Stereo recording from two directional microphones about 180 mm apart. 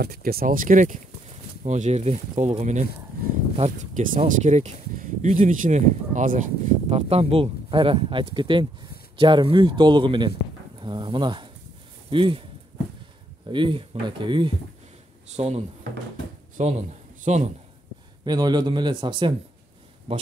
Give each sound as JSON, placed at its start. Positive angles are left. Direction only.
{"t": 0.0, "sound": "speech", "side_deg": -60}
{"t": 13.5, "sound": "speech", "side_deg": -25}
{"t": 15.3, "sound": "speech", "side_deg": -35}
{"t": 18.2, "sound": "speech", "side_deg": -25}